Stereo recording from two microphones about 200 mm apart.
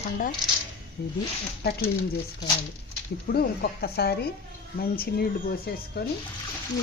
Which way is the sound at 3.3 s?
50° left (ahead or behind).